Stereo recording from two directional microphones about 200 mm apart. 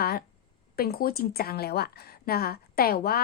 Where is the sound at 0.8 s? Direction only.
50° left (ahead or behind).